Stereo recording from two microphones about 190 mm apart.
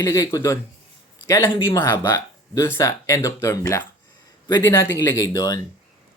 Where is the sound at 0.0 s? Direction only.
15° left (ahead or behind).